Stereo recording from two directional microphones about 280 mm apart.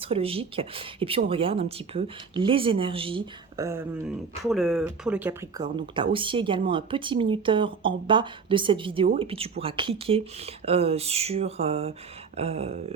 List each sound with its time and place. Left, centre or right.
0.0 s speech: centre